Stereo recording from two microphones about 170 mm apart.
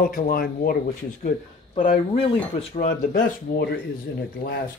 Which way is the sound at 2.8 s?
55° left (ahead or behind).